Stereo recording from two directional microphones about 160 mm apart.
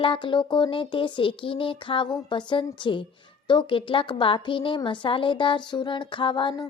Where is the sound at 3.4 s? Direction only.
30° left (ahead or behind).